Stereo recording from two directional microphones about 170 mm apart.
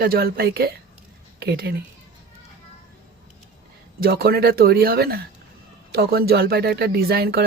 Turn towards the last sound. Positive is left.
turn(degrees=-70)  # may be behind; listen again after turning